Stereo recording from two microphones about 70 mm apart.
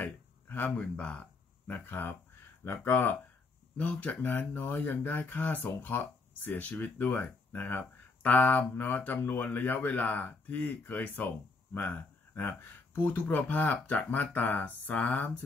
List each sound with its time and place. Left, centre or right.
0.0 s a sound: left
1.9 s speech: left
12.4 s speech: left